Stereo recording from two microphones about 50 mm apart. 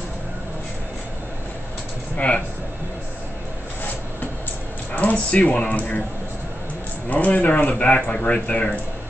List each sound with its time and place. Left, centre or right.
2.1 s speech: left
4.9 s speech: left
7.1 s speech: left